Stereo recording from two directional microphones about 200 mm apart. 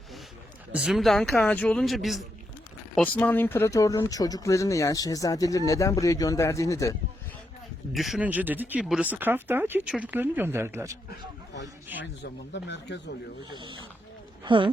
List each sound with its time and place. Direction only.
0.7 s speech: 5° right (ahead or behind); by 6.9 s 15° left (ahead or behind)
7.9 s speech: centre (ahead or behind)
12.2 s speech: 60° left (ahead or behind)
13.5 s speech: 25° right (ahead or behind)